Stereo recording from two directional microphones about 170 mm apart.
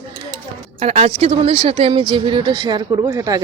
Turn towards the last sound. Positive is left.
turn(degrees=-20)  # may be behind; listen again after turning